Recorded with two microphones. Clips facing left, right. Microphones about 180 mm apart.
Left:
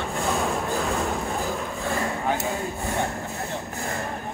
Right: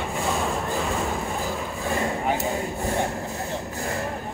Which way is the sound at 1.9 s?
20° right (ahead or behind).